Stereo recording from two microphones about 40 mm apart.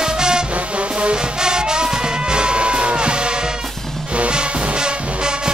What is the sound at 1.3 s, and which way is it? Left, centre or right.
Music, centre.